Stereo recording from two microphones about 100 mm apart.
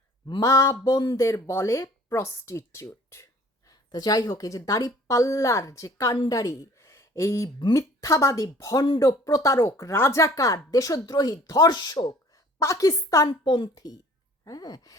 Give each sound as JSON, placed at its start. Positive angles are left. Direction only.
{"t": 0.3, "sound": "speech", "side_deg": 30}
{"t": 3.9, "sound": "speech", "side_deg": 40}
{"t": 13.2, "sound": "a woman's voice", "side_deg": 50}